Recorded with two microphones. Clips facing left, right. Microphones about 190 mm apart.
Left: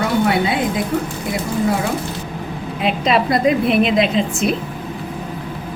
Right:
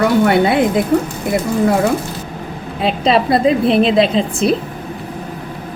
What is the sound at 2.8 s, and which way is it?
A woman's voice, 30° right (ahead or behind).